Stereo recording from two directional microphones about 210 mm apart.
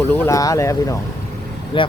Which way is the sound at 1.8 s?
25° left (ahead or behind).